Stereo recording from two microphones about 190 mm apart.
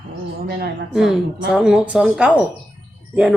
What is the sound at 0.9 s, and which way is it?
A man's voice, centre (ahead or behind).